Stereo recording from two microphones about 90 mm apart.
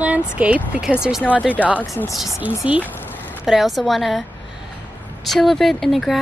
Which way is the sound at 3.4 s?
5° right (ahead or behind).